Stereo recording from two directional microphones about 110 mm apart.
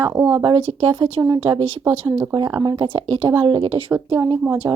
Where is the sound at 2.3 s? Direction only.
40° right (ahead or behind).